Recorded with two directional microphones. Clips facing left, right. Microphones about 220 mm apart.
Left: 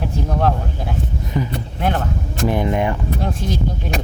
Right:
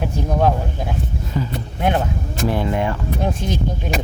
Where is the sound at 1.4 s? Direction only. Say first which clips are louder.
Left 2 dB; 15° left (ahead or behind).